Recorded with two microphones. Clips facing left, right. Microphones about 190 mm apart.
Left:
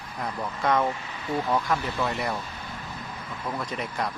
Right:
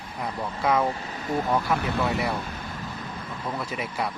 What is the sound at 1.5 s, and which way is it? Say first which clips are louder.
Speech: right 1 dB; 10° right (ahead or behind).